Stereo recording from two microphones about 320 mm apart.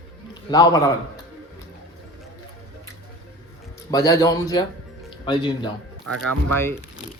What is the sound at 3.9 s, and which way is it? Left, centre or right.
Speech, centre.